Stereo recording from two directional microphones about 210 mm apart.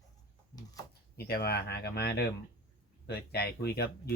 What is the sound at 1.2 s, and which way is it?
Speech, 50° left (ahead or behind).